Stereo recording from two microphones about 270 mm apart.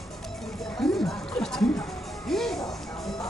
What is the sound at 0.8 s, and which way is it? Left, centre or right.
Music, centre.